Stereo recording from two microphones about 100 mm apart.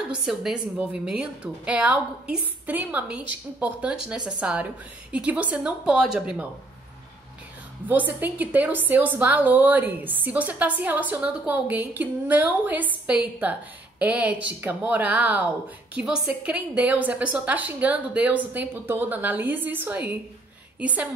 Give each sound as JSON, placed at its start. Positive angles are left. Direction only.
{"t": 0.1, "sound": "a woman's voice", "side_deg": -5}
{"t": 7.9, "sound": "a woman's voice", "side_deg": -15}